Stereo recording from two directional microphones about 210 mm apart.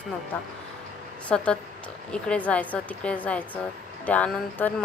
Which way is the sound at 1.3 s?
5° left (ahead or behind).